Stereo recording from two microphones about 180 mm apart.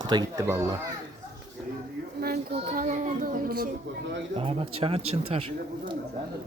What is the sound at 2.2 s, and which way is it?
Child singing, 55° right (ahead or behind).